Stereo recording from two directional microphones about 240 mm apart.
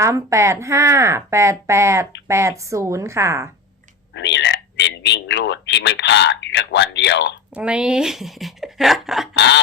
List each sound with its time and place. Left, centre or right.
0.0 s speech: centre
4.1 s speech: left
7.5 s speech: centre
9.3 s speech: left